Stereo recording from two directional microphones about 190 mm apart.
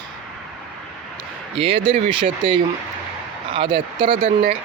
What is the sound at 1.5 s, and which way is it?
Speech, 30° right (ahead or behind).